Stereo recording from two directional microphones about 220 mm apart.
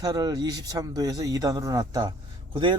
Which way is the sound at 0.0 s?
15° right (ahead or behind).